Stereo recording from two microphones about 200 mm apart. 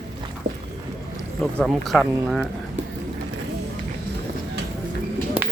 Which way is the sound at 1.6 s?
Centre (ahead or behind).